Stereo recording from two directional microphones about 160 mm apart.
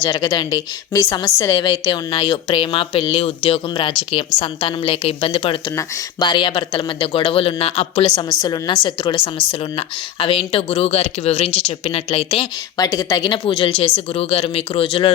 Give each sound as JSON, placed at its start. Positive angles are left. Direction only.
{"t": 0.0, "sound": "a woman's voice", "side_deg": 25}
{"t": 8.1, "sound": "speech", "side_deg": 25}
{"t": 12.7, "sound": "a woman's voice", "side_deg": 25}